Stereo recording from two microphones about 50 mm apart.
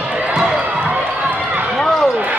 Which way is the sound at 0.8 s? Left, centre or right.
Right.